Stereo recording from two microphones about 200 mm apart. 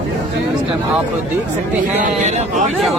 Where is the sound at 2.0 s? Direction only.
35° right (ahead or behind).